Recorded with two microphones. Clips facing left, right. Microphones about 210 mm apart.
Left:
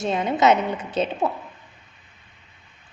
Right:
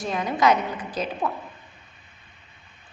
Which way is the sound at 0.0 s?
25° left (ahead or behind).